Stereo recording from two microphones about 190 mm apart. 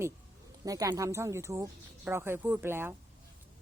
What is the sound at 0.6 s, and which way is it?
Speech, 20° right (ahead or behind).